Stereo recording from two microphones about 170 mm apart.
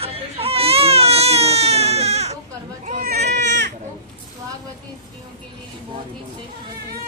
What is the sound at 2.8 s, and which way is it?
Speech, 50° right (ahead or behind).